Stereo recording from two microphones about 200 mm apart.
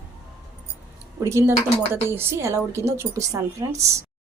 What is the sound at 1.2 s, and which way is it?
A woman's voice, 15° right (ahead or behind).